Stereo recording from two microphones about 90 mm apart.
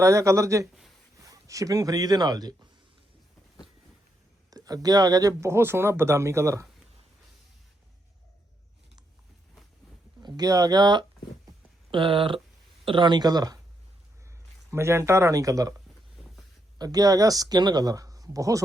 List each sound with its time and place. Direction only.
0.0 s speech: 35° right (ahead or behind)
4.5 s speech: 45° right (ahead or behind)
10.2 s speech: 45° right (ahead or behind)
11.9 s speech: 75° right (ahead or behind)
12.8 s speech: 65° right (ahead or behind); by 13.6 s 45° right (ahead or behind)
14.7 s speech: 30° right (ahead or behind)
16.7 s speech: 50° right (ahead or behind)